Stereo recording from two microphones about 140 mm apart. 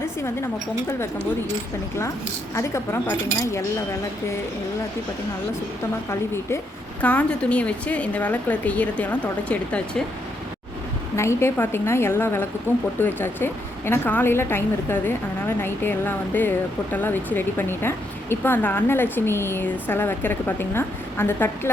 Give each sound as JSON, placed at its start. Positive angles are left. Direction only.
{"t": 2.6, "sound": "speech", "side_deg": 20}
{"t": 6.1, "sound": "speech", "side_deg": 20}
{"t": 11.2, "sound": "speech", "side_deg": 20}